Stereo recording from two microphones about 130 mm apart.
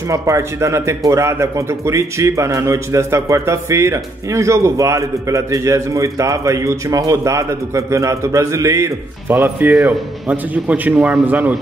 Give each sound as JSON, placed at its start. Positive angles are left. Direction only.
{"t": 0.1, "sound": "speech", "side_deg": -20}